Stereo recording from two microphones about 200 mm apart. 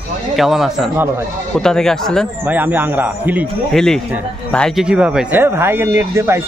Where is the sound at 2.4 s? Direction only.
10° right (ahead or behind).